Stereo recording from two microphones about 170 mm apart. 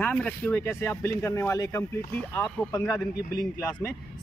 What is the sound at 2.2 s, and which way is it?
Speech, 10° left (ahead or behind).